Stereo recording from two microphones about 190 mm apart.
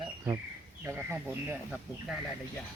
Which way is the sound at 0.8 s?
10° right (ahead or behind).